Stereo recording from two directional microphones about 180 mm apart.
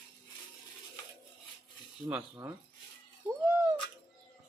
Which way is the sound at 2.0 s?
10° right (ahead or behind).